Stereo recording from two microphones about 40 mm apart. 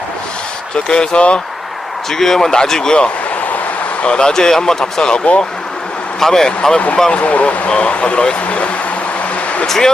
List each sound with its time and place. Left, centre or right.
0.9 s speech: left
2.0 s a man's voice: centre; by 5.4 s left
6.1 s a man's voice: centre
6.7 s speech: left
9.6 s speech: centre